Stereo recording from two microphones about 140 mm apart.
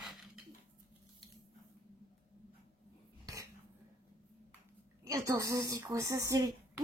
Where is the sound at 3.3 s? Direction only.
25° right (ahead or behind).